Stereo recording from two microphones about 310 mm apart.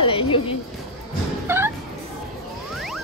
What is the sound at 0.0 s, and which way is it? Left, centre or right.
Music, centre.